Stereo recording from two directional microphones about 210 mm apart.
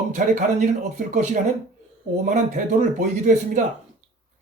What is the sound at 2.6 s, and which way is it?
Speech, 40° right (ahead or behind).